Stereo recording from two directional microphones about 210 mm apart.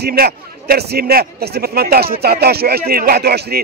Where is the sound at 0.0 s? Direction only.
45° right (ahead or behind).